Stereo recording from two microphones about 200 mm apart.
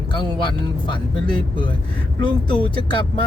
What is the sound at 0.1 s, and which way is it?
Speech, 25° left (ahead or behind).